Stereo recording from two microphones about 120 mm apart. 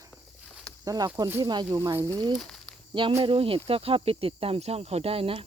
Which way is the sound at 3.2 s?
50° right (ahead or behind).